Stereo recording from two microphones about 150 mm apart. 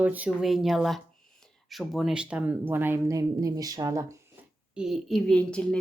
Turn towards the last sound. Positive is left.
turn(degrees=5)  # may be behind; listen again after turning